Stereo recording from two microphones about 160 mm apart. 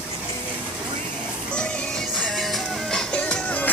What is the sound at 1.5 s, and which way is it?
Music, 5° left (ahead or behind).